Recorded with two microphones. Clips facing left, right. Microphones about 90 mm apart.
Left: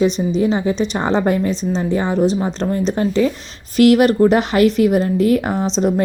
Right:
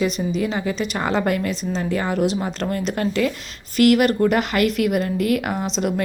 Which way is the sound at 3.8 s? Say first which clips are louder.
Left 4 dB; 35° left (ahead or behind).